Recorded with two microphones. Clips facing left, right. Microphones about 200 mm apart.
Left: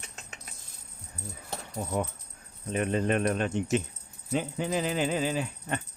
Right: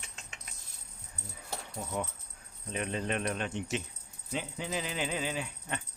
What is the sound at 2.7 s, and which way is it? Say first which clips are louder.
Speech: left 7 dB; 50° left (ahead or behind).